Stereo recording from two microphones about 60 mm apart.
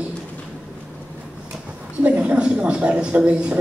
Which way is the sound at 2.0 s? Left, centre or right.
Right.